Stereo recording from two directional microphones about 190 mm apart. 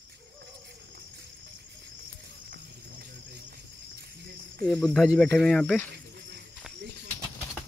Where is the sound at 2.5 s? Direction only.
55° right (ahead or behind).